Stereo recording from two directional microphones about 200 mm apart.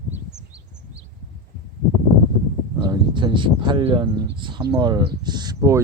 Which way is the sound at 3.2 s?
25° right (ahead or behind).